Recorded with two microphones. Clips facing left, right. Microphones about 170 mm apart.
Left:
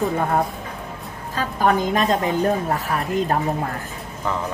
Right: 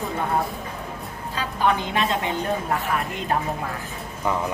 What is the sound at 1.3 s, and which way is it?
A woman's voice, 45° left (ahead or behind).